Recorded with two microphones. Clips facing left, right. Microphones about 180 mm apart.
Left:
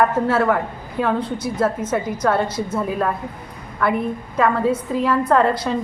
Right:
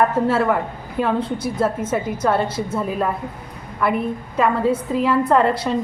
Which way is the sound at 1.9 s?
5° right (ahead or behind).